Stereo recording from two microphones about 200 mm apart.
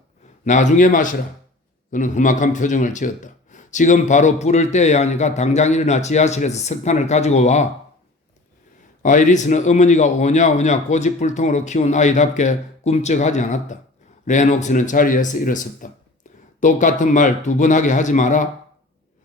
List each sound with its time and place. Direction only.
0.4 s speech: 40° left (ahead or behind)
9.0 s speech: 40° left (ahead or behind)